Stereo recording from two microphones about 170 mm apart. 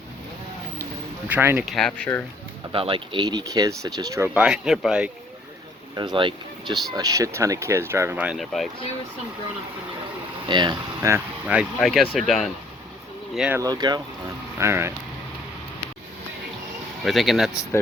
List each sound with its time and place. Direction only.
1.3 s speech: 10° right (ahead or behind)
2.7 s speech: 30° right (ahead or behind)
4.4 s speech: 5° right (ahead or behind)
6.0 s speech: 30° right (ahead or behind); by 8.7 s centre (ahead or behind)
10.4 s speech: 25° right (ahead or behind); by 13.6 s 5° right (ahead or behind)
13.6 s speech: 25° right (ahead or behind)
17.0 s speech: centre (ahead or behind)
17.5 s speech: 20° left (ahead or behind)